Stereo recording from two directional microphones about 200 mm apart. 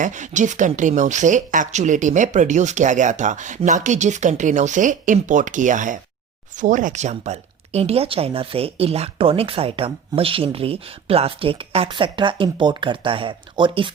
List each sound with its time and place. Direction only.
0.0 s speech: 40° right (ahead or behind)